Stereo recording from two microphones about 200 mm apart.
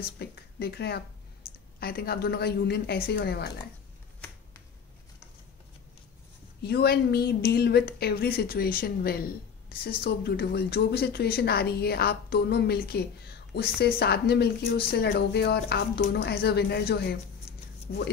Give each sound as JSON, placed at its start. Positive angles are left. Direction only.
{"t": 0.0, "sound": "a woman's voice", "side_deg": 50}
{"t": 6.6, "sound": "a woman's voice", "side_deg": 55}